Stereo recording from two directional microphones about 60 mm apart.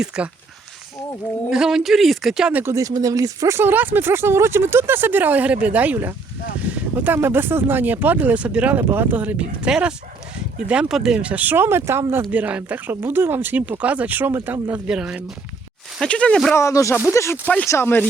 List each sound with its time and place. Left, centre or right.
0.1 s speech: centre
1.5 s speech: centre
2.7 s speech: right
3.5 s speech: right
8.4 s speech: centre
8.8 s speech: right; by 11.2 s centre
11.2 s speech: right
11.5 s speech: right
12.3 s speech: right
13.6 s speech: right
14.7 s speech: centre
16.0 s speech: centre
16.6 s speech: left
17.7 s speech: left